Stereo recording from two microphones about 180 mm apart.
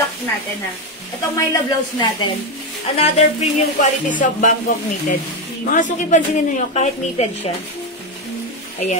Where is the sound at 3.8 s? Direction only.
45° left (ahead or behind).